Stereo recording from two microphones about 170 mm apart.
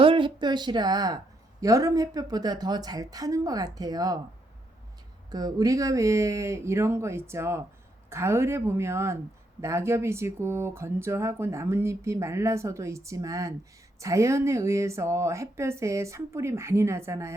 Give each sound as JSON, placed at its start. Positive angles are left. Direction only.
{"t": 0.0, "sound": "a woman's voice", "side_deg": -30}
{"t": 5.3, "sound": "speech", "side_deg": -20}